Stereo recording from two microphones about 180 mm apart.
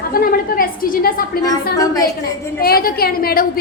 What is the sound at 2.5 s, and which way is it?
Speech, 55° left (ahead or behind).